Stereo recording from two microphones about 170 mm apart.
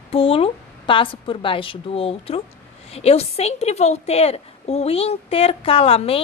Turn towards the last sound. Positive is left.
turn(degrees=35)  # may be behind; listen again after turning